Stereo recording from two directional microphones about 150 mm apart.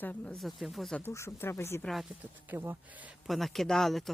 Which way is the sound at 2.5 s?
15° right (ahead or behind).